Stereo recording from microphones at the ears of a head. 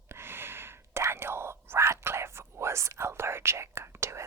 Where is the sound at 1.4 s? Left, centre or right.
Right.